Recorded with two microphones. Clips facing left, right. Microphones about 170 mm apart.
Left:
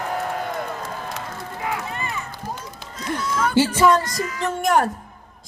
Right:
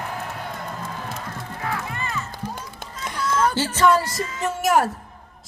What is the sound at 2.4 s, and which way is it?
Run, 50° left (ahead or behind).